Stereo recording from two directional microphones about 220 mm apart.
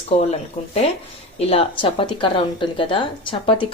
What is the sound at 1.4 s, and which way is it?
Speech, 25° left (ahead or behind).